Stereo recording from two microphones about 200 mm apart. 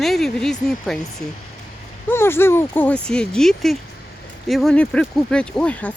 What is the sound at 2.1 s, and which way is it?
Speech, 10° left (ahead or behind).